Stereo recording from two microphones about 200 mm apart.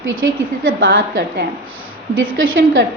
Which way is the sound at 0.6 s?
65° right (ahead or behind).